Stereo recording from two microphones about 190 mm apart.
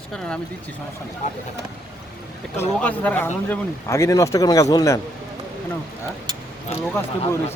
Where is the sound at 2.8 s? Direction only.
10° left (ahead or behind).